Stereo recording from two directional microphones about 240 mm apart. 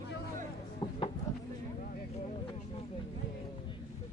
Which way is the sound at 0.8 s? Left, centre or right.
Centre.